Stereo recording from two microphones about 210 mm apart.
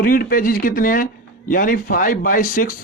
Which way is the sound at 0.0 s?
45° left (ahead or behind).